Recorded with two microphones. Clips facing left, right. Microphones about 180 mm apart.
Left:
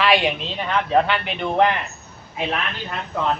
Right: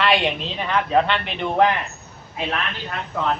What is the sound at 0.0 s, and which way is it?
A woman's voice, centre (ahead or behind).